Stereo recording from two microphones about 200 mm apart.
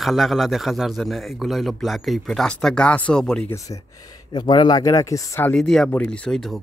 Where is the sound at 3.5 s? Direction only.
15° left (ahead or behind).